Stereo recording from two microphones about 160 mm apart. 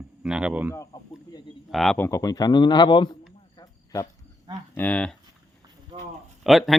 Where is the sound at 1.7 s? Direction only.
Centre (ahead or behind).